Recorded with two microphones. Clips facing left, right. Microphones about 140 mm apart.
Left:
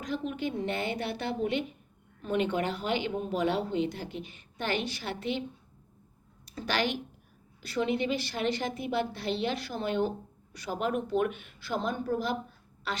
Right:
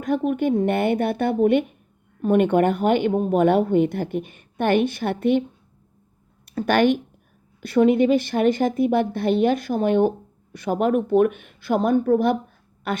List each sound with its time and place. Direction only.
0.0 s speech: 55° right (ahead or behind)
6.4 s a woman's voice: 55° right (ahead or behind)